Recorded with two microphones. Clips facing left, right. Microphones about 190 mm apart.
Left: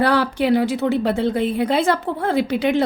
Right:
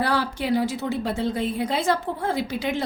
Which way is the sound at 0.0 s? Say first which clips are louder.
Left 7 dB; 65° left (ahead or behind).